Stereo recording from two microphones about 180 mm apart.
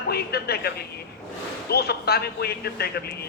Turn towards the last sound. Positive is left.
turn(degrees=60)  # may be behind; listen again after turning